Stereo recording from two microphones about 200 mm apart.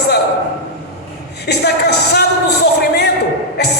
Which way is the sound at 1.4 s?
55° left (ahead or behind).